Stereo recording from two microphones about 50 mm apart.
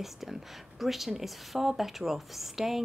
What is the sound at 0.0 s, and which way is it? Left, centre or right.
Speech, centre.